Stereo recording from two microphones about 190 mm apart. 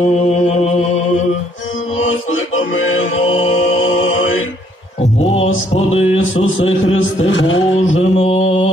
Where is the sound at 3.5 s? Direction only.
90° left.